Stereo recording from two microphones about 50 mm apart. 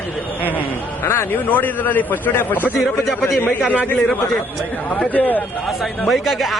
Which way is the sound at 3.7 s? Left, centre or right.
Left.